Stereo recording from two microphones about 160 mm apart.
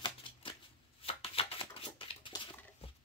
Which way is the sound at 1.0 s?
35° left (ahead or behind).